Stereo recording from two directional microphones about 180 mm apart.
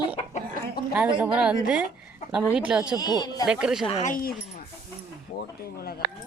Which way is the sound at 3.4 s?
5° right (ahead or behind).